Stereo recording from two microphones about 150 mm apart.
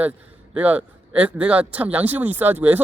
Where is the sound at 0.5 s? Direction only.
10° right (ahead or behind).